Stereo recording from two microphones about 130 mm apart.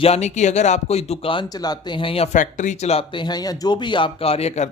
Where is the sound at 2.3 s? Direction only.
75° left (ahead or behind); by 3.0 s 55° left (ahead or behind).